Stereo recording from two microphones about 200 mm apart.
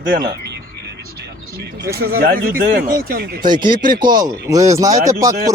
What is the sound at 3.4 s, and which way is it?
A man's voice, 20° right (ahead or behind).